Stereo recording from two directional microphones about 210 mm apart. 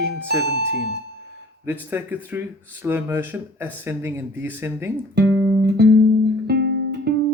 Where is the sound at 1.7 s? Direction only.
10° right (ahead or behind).